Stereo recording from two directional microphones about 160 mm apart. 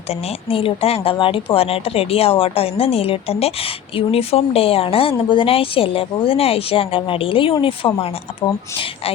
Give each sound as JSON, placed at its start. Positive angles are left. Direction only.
{"t": 0.1, "sound": "speech", "side_deg": 35}